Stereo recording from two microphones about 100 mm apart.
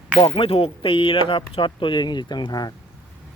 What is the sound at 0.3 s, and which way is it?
Speech, 70° left (ahead or behind).